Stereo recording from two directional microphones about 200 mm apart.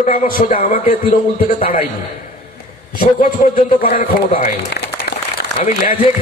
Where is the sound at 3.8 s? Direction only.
40° left (ahead or behind).